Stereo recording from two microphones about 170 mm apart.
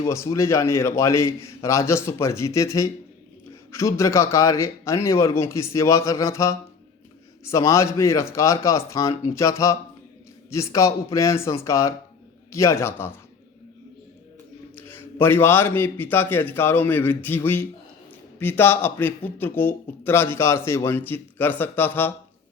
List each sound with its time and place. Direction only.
0.0 s a man's voice: 20° left (ahead or behind)
14.8 s a man's voice: 15° left (ahead or behind)